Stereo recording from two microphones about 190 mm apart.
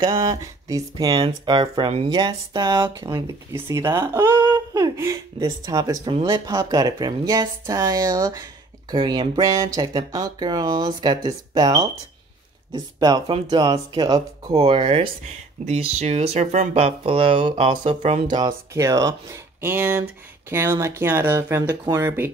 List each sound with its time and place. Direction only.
0.0 s speech: 20° right (ahead or behind)
4.3 s speech: 25° right (ahead or behind)
18.2 s speech: 25° right (ahead or behind)